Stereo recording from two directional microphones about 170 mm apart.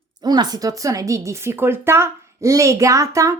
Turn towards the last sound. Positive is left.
turn(degrees=-20)  # may be behind; listen again after turning